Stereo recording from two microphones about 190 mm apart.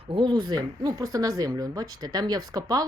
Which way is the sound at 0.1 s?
25° right (ahead or behind).